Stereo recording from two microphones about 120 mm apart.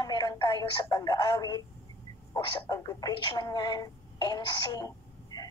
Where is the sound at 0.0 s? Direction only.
35° left (ahead or behind).